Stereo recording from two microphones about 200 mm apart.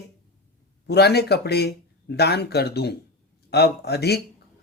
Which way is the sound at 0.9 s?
55° left (ahead or behind).